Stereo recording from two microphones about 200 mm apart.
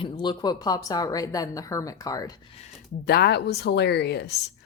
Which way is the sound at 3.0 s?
55° left (ahead or behind).